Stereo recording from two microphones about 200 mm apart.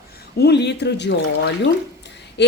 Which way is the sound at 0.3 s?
55° left (ahead or behind).